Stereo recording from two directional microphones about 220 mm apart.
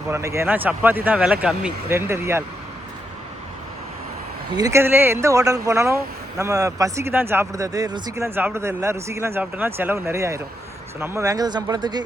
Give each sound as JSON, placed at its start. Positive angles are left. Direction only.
{"t": 0.1, "sound": "speech", "side_deg": -15}
{"t": 4.5, "sound": "speech", "side_deg": -15}